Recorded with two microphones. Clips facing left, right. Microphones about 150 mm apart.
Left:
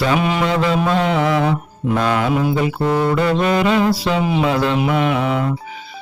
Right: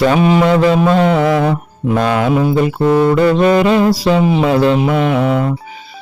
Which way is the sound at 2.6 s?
50° right (ahead or behind).